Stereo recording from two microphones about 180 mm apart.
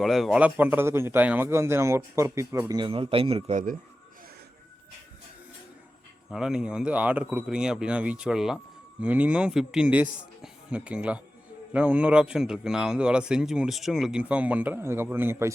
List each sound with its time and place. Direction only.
0.0 s a man's voice: centre (ahead or behind); by 3.6 s 35° right (ahead or behind)
6.3 s a man's voice: 5° right (ahead or behind)